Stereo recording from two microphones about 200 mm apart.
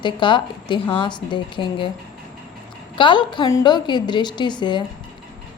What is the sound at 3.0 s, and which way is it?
A woman's voice, 25° left (ahead or behind).